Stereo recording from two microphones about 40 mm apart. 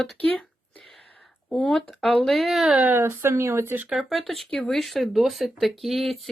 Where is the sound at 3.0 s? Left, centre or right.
Right.